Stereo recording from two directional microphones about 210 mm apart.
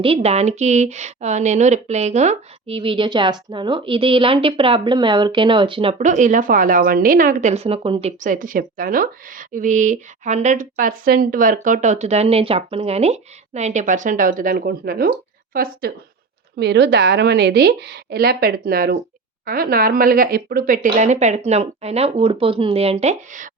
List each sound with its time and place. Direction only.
0.0 s a woman's voice: 30° right (ahead or behind)